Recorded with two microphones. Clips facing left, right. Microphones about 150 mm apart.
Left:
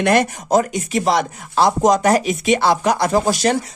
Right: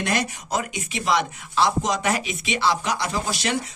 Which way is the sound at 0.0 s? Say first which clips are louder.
Left 9 dB; 55° left (ahead or behind).